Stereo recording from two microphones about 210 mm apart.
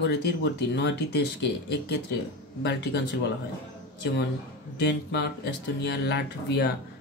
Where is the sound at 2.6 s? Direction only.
50° left (ahead or behind).